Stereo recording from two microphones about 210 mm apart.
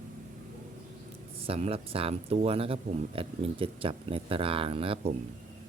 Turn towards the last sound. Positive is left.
turn(degrees=-25)  # may be behind; listen again after turning